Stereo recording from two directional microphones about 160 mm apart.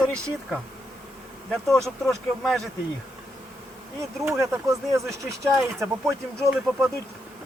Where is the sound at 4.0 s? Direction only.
15° right (ahead or behind).